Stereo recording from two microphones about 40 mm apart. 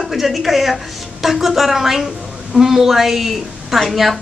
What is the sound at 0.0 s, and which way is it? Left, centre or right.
A woman's voice, centre.